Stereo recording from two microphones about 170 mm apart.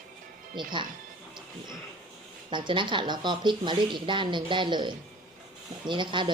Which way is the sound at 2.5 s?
30° right (ahead or behind).